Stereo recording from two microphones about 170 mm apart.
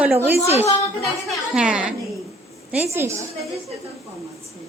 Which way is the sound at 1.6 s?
5° right (ahead or behind).